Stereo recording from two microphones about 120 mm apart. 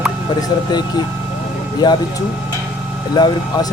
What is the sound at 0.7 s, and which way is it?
Speech, 35° left (ahead or behind).